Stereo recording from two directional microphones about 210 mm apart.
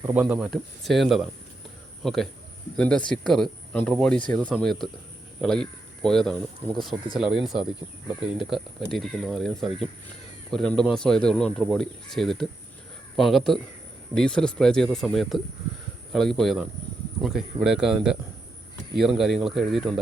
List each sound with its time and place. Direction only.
0.0 s speech: 10° right (ahead or behind)